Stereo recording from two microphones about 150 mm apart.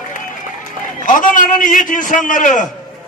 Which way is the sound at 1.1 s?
60° left (ahead or behind).